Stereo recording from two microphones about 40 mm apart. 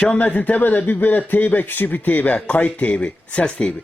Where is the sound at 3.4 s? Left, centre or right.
Left.